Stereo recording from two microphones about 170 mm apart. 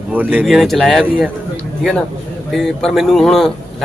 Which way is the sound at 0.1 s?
10° right (ahead or behind).